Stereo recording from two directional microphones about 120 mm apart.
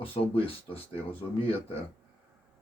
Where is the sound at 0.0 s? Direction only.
50° left (ahead or behind).